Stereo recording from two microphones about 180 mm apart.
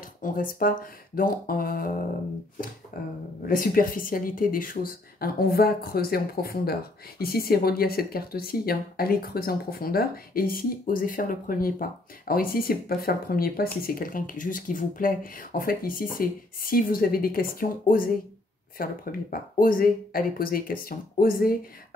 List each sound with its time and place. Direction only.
0.2 s speech: 50° left (ahead or behind)
2.9 s speech: 55° left (ahead or behind)